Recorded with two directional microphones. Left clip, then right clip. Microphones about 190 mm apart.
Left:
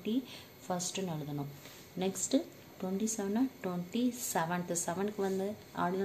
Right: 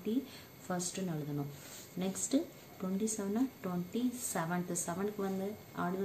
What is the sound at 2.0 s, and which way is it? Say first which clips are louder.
A woman's voice: left 2 dB; 15° left (ahead or behind).